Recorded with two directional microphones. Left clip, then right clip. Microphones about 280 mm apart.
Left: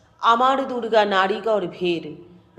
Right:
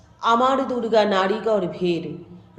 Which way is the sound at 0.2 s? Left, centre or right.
Centre.